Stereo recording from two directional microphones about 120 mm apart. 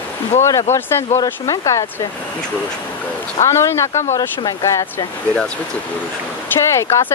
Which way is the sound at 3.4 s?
25° left (ahead or behind).